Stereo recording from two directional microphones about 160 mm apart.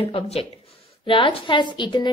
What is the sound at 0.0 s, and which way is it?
A woman's voice, 35° left (ahead or behind).